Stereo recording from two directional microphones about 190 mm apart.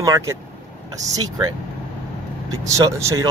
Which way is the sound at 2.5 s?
15° right (ahead or behind).